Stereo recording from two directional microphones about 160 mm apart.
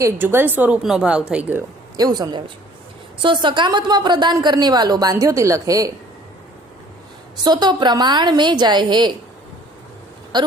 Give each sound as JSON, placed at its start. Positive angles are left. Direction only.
{"t": 0.0, "sound": "a woman's voice", "side_deg": -15}
{"t": 2.0, "sound": "a woman's voice", "side_deg": -25}
{"t": 7.4, "sound": "a woman's voice", "side_deg": -25}
{"t": 10.3, "sound": "a woman's voice", "side_deg": -30}